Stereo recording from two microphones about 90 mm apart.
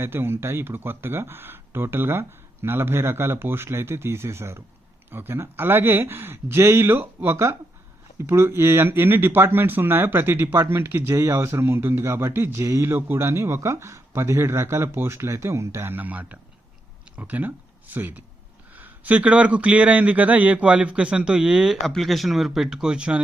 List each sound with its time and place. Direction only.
0.0 s speech: 25° right (ahead or behind)